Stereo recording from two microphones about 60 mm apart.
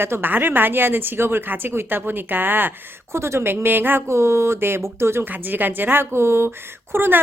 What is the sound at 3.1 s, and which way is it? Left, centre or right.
Speech, right.